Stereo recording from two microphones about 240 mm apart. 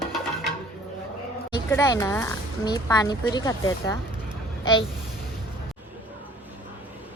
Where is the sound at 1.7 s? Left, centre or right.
Centre.